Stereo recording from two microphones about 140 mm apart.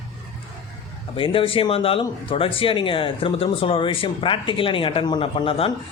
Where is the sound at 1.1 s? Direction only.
40° left (ahead or behind).